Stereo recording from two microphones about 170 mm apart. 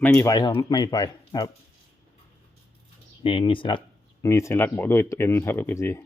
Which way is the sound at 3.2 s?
30° left (ahead or behind).